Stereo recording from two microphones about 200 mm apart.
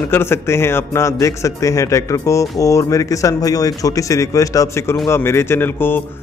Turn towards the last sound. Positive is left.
turn(degrees=10)  # may be behind; listen again after turning